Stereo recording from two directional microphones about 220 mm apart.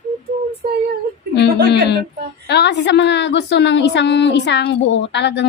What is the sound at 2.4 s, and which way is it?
A woman's voice, 50° left (ahead or behind).